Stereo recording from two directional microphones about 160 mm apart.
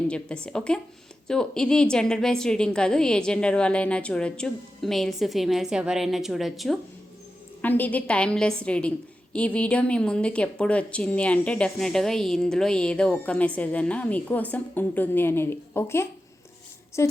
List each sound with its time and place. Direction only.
0.1 s a woman's voice: 5° left (ahead or behind)
7.6 s a woman's voice: 10° left (ahead or behind)